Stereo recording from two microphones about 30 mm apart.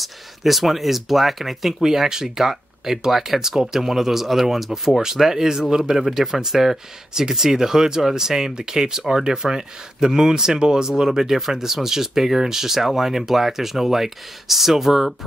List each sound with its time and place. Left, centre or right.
0.0 s speech: centre
7.2 s speech: centre
11.1 s speech: centre